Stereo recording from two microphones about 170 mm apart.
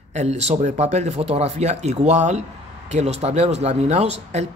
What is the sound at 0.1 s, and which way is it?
Speech, 40° right (ahead or behind).